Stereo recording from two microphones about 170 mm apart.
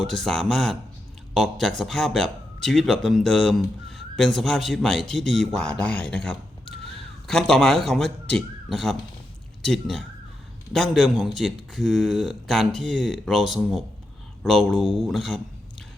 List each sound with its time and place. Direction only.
0.0 s speech: centre (ahead or behind)